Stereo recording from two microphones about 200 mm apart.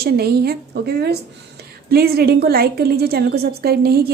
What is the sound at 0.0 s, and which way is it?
A woman's voice, 50° right (ahead or behind).